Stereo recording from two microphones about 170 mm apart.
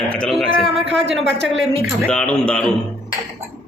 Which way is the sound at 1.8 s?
5° left (ahead or behind).